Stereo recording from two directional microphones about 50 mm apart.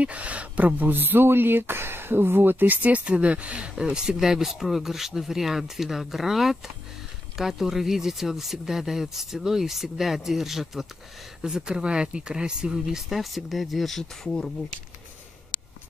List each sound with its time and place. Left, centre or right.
0.0 s speech: right
3.7 s speech: centre
11.4 s speech: centre
13.1 s speech: centre